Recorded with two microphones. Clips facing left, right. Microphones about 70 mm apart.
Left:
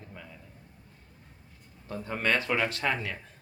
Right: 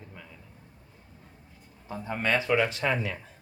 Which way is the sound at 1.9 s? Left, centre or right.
Centre.